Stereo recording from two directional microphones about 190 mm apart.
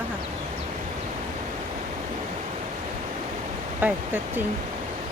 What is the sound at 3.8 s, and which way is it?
Speech, 10° right (ahead or behind).